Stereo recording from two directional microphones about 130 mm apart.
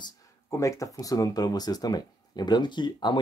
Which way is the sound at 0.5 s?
25° left (ahead or behind).